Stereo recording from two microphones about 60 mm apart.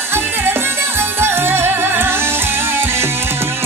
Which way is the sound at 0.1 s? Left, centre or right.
Right.